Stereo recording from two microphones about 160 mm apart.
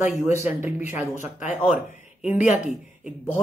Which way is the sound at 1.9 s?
45° left (ahead or behind).